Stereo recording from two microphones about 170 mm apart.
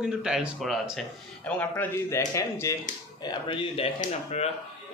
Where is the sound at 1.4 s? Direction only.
10° left (ahead or behind).